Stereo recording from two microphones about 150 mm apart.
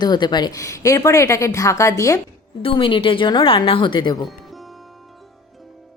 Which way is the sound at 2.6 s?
35° left (ahead or behind).